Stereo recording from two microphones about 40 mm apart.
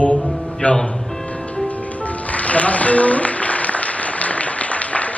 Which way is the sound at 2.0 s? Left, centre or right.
Left.